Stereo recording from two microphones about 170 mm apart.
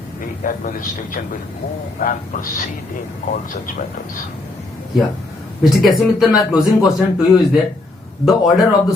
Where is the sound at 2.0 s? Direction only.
50° left (ahead or behind).